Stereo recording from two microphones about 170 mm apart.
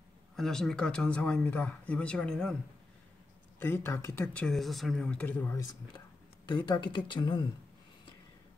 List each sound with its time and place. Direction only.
0.4 s speech: 5° left (ahead or behind)
3.6 s speech: 15° left (ahead or behind)
4.5 s speech: centre (ahead or behind)
6.5 s speech: 30° left (ahead or behind)